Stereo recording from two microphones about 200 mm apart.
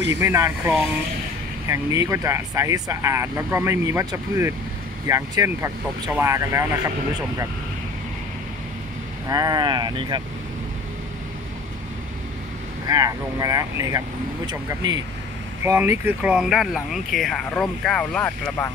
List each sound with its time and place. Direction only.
0.1 s speech: 15° right (ahead or behind)
9.3 s speech: 20° right (ahead or behind)
12.8 s speech: 15° right (ahead or behind); by 18.7 s 5° left (ahead or behind)